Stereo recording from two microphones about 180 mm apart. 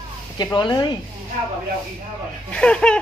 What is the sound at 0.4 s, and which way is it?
Speech, 25° left (ahead or behind).